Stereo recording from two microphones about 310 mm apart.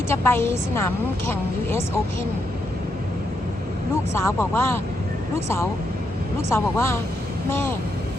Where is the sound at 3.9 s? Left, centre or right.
Centre.